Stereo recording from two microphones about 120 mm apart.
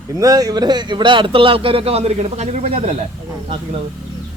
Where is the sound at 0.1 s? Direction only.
30° right (ahead or behind); by 2.9 s 70° right (ahead or behind).